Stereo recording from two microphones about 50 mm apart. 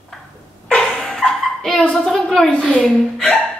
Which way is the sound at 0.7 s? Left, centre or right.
Centre.